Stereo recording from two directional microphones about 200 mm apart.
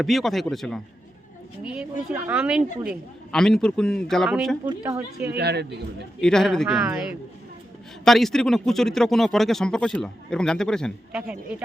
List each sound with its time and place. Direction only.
0.0 s speech: centre (ahead or behind)
1.8 s speech: 5° right (ahead or behind)
5.3 s a man's voice: 55° right (ahead or behind)
6.1 s speech: 5° left (ahead or behind)
8.0 s speech: centre (ahead or behind)
11.1 s speech: 10° right (ahead or behind)